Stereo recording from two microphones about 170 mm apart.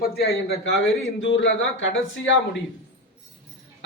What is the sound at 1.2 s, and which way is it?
Speech, 90° left.